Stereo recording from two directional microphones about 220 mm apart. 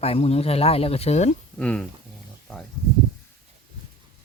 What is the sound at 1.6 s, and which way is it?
Speech, 5° left (ahead or behind).